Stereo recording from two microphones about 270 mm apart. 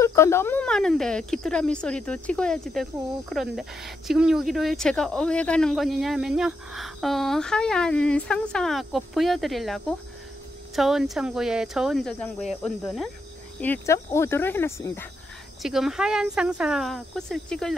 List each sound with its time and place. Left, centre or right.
0.0 s speech: centre